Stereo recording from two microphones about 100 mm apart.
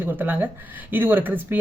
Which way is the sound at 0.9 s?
20° right (ahead or behind).